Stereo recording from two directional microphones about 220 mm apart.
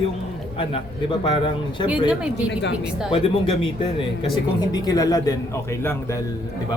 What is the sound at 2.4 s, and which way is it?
Speech, 5° right (ahead or behind).